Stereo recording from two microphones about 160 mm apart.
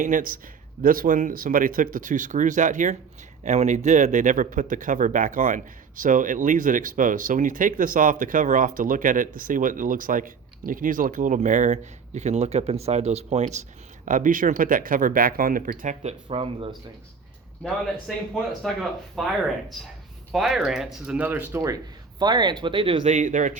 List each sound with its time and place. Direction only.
0.0 s speech: 55° right (ahead or behind)
14.0 s speech: 55° right (ahead or behind); by 16.6 s 35° right (ahead or behind)
18.1 s speech: 5° left (ahead or behind); by 23.0 s 30° right (ahead or behind)
23.0 s speech: 55° right (ahead or behind)